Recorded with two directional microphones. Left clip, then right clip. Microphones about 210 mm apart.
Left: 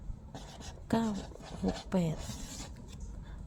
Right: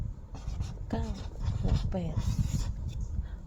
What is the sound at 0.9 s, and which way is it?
Speech, 30° left (ahead or behind).